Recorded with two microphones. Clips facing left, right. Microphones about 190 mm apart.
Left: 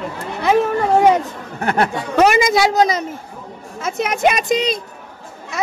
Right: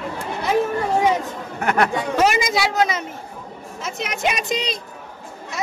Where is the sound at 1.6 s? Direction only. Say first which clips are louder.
Left 1 dB; 30° left (ahead or behind).